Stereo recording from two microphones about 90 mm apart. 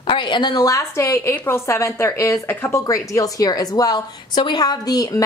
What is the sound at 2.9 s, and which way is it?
A woman's voice, 40° left (ahead or behind).